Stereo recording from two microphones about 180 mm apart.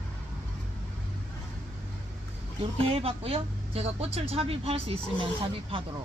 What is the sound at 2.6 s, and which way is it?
Speech, 30° right (ahead or behind).